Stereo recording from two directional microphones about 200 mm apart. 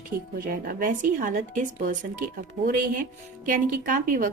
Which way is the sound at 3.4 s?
40° right (ahead or behind).